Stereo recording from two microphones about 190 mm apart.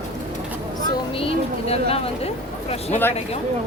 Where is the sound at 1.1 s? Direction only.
30° left (ahead or behind).